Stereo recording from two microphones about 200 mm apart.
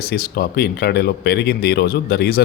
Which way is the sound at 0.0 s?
50° left (ahead or behind).